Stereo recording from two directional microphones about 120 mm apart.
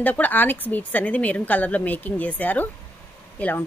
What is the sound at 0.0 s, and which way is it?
Speech, 15° left (ahead or behind).